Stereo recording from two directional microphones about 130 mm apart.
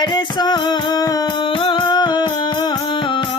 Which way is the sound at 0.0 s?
35° left (ahead or behind).